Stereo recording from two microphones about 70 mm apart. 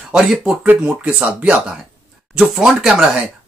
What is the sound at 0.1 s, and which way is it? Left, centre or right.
Speech, centre.